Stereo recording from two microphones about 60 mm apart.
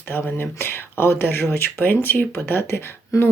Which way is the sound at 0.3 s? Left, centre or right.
Left.